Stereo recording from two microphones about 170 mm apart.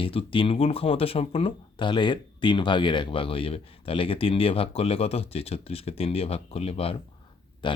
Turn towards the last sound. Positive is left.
turn(degrees=25)  # may be behind; listen again after turning